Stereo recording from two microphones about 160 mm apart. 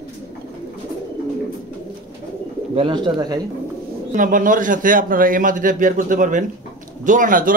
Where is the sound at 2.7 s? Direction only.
30° right (ahead or behind).